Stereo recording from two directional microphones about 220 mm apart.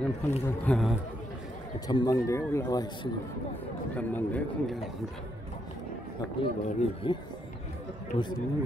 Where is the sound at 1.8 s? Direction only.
15° left (ahead or behind).